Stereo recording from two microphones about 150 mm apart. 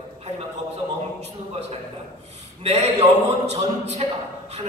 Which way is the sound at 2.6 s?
45° right (ahead or behind).